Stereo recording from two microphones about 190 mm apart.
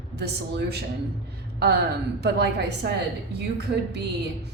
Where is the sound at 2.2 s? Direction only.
60° right (ahead or behind).